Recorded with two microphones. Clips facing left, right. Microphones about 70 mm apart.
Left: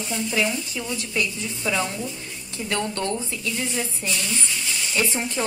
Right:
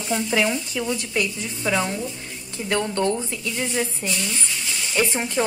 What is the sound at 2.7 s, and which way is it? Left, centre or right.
Speech, right.